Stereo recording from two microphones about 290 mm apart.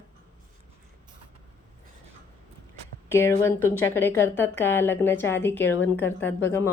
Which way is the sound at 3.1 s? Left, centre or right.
Centre.